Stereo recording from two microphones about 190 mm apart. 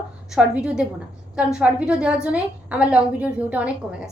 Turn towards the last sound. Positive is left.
turn(degrees=-5)  # may be behind; listen again after turning